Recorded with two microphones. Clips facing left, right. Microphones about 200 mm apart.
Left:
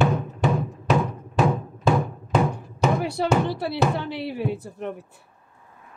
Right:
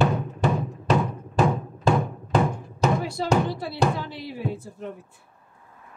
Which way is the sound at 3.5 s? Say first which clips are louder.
Left 2 dB; 65° left (ahead or behind).